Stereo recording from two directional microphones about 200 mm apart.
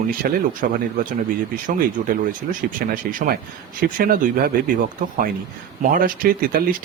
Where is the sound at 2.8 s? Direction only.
45° right (ahead or behind).